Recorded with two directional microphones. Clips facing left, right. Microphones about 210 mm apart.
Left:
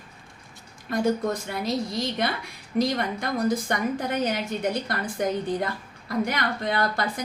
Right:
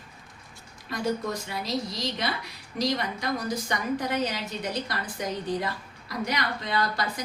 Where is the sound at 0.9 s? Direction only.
50° left (ahead or behind).